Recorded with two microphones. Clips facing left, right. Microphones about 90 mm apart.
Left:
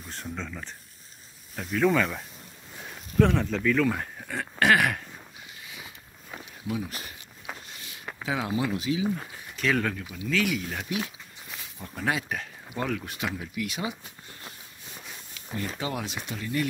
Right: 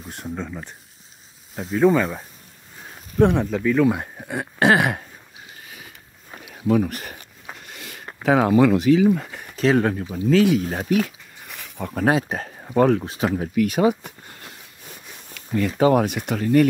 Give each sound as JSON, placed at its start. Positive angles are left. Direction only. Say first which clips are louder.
{"t": 0.1, "sound": "speech", "louder": "right 6 dB", "side_deg": -15}
{"t": 5.6, "sound": "sniff", "louder": "right 1 dB", "side_deg": -45}
{"t": 6.7, "sound": "speech", "louder": "right 13 dB", "side_deg": -55}
{"t": 7.6, "sound": "a sound", "louder": "right 6 dB", "side_deg": -60}
{"t": 8.2, "sound": "speech", "louder": "right 13 dB", "side_deg": -55}
{"t": 9.6, "sound": "speech", "louder": "right 8 dB", "side_deg": -30}
{"t": 12.1, "sound": "speech", "louder": "right 7 dB", "side_deg": -35}
{"t": 13.0, "sound": "speech", "louder": "right 9 dB", "side_deg": -30}
{"t": 13.3, "sound": "speech", "louder": "right 12 dB", "side_deg": -45}
{"t": 15.8, "sound": "speech", "louder": "right 15 dB", "side_deg": -50}